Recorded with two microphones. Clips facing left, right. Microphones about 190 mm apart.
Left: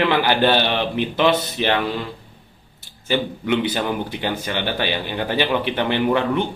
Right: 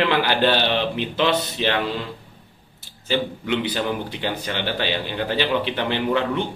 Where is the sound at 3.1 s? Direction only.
50° left (ahead or behind).